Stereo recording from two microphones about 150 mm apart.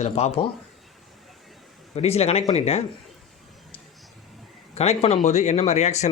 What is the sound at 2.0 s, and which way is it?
Speech, 45° left (ahead or behind).